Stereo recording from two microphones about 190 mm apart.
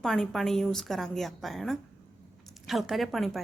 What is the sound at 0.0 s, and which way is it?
A woman's voice, centre (ahead or behind).